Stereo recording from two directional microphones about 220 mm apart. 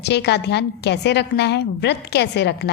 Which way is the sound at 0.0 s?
50° left (ahead or behind).